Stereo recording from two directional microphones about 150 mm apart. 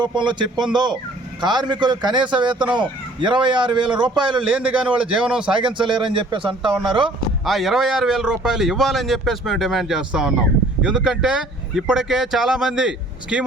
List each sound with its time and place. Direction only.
0.0 s a man's voice: 30° right (ahead or behind)
4.4 s a man's voice: 10° right (ahead or behind)
5.5 s a man's voice: 35° right (ahead or behind)
7.4 s a man's voice: centre (ahead or behind)